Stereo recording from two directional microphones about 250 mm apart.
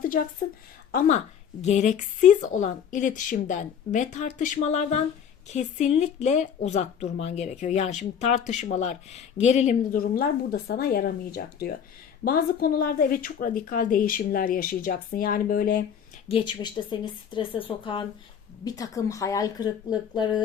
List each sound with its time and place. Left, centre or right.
0.9 s a woman's voice: left
16.3 s speech: centre